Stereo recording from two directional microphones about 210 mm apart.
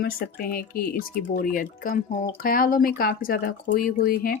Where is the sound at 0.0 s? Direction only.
45° left (ahead or behind).